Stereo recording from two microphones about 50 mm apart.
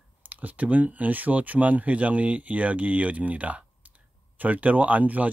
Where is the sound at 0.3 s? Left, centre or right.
Right.